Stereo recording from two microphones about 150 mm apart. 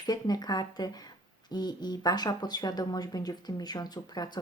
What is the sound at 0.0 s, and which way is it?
A woman's voice, 25° left (ahead or behind).